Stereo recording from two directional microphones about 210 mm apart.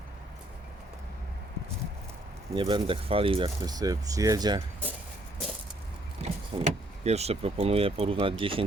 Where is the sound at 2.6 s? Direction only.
20° right (ahead or behind).